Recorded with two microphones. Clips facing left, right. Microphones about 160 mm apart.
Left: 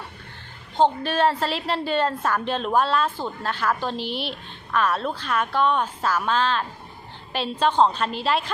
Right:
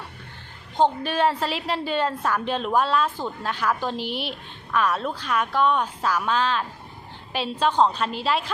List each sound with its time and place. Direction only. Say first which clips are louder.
1.0 s a woman's voice: left 1 dB; 10° right (ahead or behind)